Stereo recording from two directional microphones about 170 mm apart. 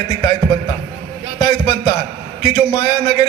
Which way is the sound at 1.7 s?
25° left (ahead or behind).